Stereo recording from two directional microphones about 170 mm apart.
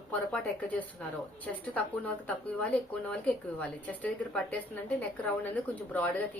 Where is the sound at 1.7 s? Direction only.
10° left (ahead or behind).